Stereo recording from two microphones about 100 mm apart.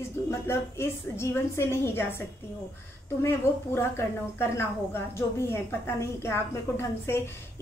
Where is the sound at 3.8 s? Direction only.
25° left (ahead or behind).